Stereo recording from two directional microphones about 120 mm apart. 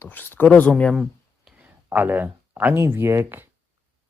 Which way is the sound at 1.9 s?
15° right (ahead or behind).